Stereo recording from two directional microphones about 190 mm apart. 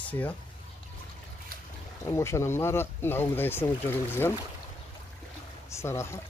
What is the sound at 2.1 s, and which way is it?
Speech, 15° left (ahead or behind).